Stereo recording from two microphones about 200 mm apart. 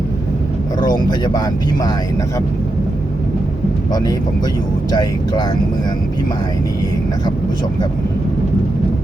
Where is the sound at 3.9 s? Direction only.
20° left (ahead or behind).